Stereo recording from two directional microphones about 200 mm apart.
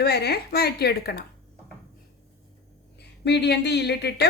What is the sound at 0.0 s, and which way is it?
A woman's voice, 50° left (ahead or behind).